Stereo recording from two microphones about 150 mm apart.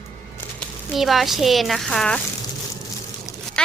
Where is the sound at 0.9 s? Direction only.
Centre (ahead or behind).